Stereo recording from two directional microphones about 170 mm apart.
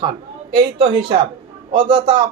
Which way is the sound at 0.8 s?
30° right (ahead or behind).